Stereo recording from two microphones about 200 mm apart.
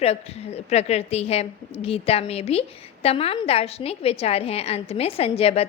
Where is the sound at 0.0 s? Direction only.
30° left (ahead or behind).